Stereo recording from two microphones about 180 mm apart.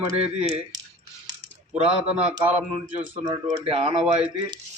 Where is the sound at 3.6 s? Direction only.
35° right (ahead or behind).